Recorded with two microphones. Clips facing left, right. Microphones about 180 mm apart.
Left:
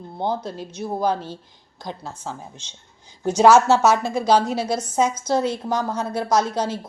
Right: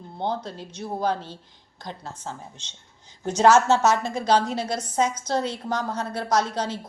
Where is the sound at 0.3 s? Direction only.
10° left (ahead or behind).